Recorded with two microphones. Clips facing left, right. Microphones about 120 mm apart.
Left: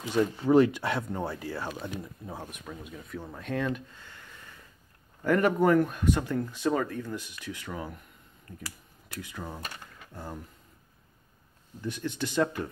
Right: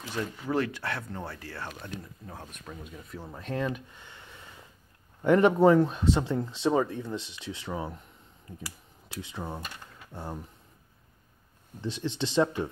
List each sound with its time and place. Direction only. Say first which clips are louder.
0.0 s speech: left 8 dB; 20° left (ahead or behind)
2.7 s speech: left 1 dB; centre (ahead or behind)
3.9 s a sound: right 1 dB; 20° right (ahead or behind)
5.2 s speech: right 4 dB; 25° right (ahead or behind)
8.5 s a sound: right 1 dB; 10° right (ahead or behind)
9.2 s speech: right 2 dB; 25° right (ahead or behind)
11.8 s speech: right 1 dB; 25° right (ahead or behind)